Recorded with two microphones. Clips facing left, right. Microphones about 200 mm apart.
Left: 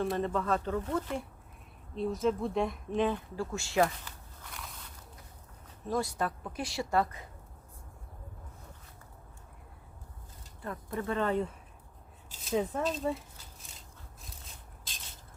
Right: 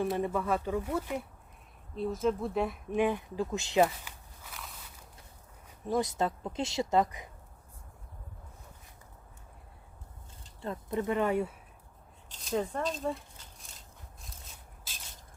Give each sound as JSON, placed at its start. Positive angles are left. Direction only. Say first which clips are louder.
{"t": 0.2, "sound": "speech", "louder": "even", "side_deg": -10}
{"t": 3.8, "sound": "walk", "louder": "right 1 dB", "side_deg": -5}
{"t": 5.9, "sound": "speech", "louder": "right 2 dB", "side_deg": -20}
{"t": 10.6, "sound": "speech", "louder": "right 3 dB", "side_deg": -20}
{"t": 12.3, "sound": "a sound", "louder": "left 1 dB", "side_deg": 5}